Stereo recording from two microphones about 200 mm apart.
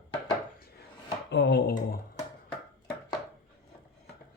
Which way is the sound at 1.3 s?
60° left (ahead or behind).